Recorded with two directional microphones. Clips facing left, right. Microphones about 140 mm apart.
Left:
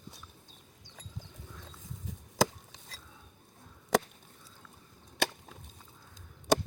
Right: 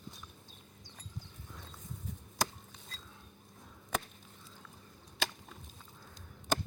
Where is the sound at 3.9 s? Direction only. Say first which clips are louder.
Left 10 dB; 90° left.